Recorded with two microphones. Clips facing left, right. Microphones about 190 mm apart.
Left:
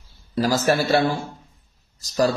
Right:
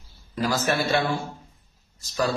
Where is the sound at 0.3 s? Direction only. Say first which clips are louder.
Left 5 dB; 35° left (ahead or behind).